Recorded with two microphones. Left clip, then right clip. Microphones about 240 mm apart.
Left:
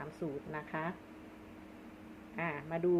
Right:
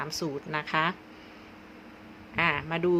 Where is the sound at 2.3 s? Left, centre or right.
Right.